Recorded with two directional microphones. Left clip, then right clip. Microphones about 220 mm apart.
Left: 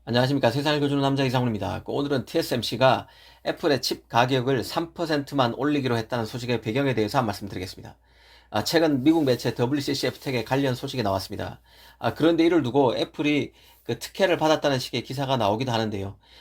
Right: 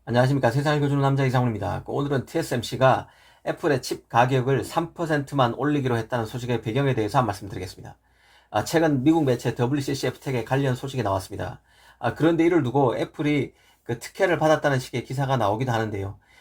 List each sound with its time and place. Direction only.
0.2 s a man's voice: 25° left (ahead or behind)
8.7 s a man's voice: 25° left (ahead or behind)
14.3 s a man's voice: 25° left (ahead or behind)